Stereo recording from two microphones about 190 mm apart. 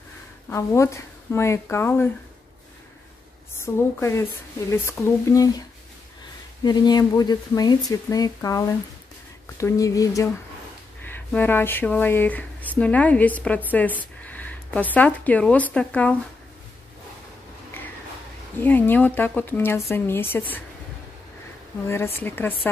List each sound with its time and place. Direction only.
0.5 s speech: 15° left (ahead or behind)
3.5 s speech: 15° left (ahead or behind)
6.6 s a woman's voice: 20° left (ahead or behind)
17.7 s a sound: 10° left (ahead or behind)
18.6 s speech: 10° left (ahead or behind)
21.8 s speech: 15° left (ahead or behind)